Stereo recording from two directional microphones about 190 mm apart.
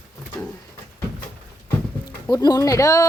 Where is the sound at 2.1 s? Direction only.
20° left (ahead or behind).